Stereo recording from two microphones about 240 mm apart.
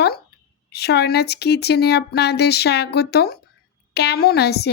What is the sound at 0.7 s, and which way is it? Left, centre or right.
Speech, left.